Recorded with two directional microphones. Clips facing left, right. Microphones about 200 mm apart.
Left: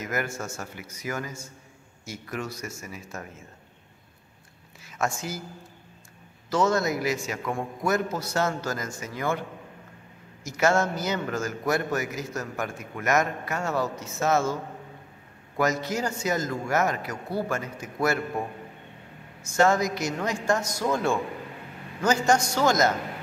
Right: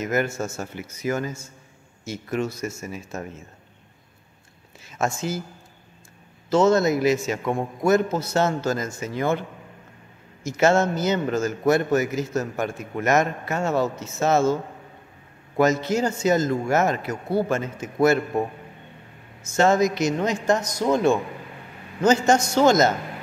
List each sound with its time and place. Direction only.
0.0 s a man's voice: 25° right (ahead or behind)
4.8 s speech: 25° right (ahead or behind)
6.5 s a man's voice: 25° right (ahead or behind)
10.4 s a man's voice: 25° right (ahead or behind)
19.5 s a man's voice: 25° right (ahead or behind)